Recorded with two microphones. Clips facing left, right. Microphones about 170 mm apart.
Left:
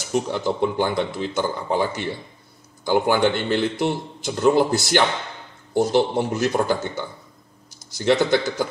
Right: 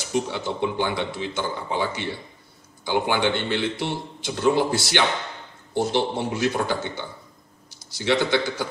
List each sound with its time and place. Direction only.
0.1 s speech: 45° left (ahead or behind)